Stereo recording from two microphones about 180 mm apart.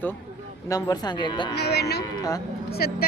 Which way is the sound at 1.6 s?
65° left (ahead or behind).